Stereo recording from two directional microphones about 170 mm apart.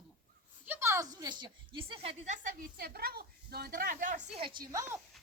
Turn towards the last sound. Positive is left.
turn(degrees=-30)  # may be behind; listen again after turning